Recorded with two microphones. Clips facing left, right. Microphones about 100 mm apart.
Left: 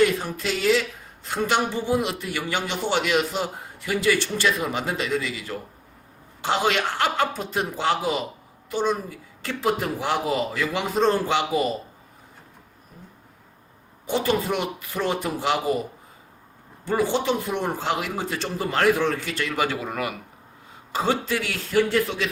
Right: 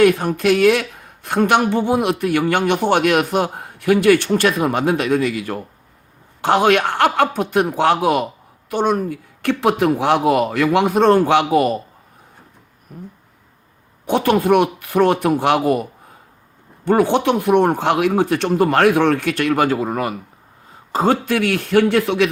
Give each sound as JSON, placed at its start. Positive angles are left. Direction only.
{"t": 0.0, "sound": "speech", "side_deg": -60}
{"t": 12.9, "sound": "a sound", "side_deg": -55}
{"t": 14.1, "sound": "speech", "side_deg": -60}
{"t": 19.6, "sound": "speech", "side_deg": -40}
{"t": 20.9, "sound": "speech", "side_deg": -50}